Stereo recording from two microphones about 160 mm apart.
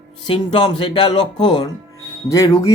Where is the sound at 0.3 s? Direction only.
35° left (ahead or behind).